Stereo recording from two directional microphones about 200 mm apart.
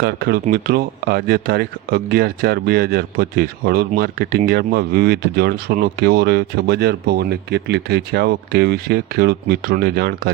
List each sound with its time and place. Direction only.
0.0 s speech: 50° right (ahead or behind)